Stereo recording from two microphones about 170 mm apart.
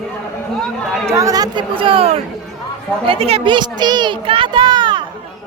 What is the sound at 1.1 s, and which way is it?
A child's voice, 20° right (ahead or behind).